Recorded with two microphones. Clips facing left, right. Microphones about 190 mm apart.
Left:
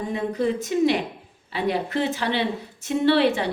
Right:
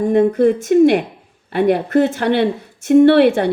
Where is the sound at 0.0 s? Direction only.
50° right (ahead or behind).